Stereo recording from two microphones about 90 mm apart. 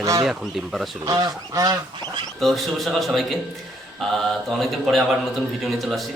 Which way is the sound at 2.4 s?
Centre (ahead or behind).